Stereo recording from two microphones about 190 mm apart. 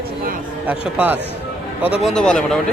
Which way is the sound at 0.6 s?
10° right (ahead or behind).